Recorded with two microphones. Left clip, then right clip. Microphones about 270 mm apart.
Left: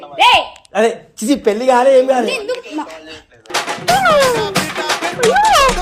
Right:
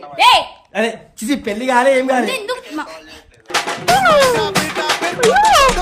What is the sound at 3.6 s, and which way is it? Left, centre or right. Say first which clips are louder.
Music: even; centre.